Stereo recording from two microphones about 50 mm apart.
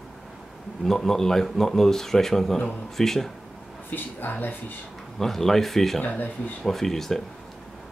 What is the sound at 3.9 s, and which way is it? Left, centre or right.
Speech, left.